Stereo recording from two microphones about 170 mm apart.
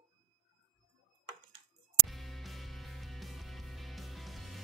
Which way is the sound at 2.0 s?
Centre (ahead or behind).